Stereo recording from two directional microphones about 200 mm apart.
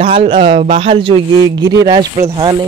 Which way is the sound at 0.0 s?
25° right (ahead or behind).